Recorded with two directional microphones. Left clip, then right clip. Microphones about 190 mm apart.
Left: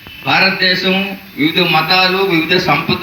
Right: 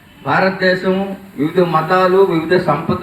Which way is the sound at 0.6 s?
5° right (ahead or behind).